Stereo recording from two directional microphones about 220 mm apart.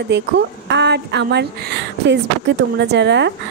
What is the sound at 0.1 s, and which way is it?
A woman's voice, 50° right (ahead or behind).